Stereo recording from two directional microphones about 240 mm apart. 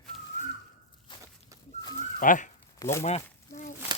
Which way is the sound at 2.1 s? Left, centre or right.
Left.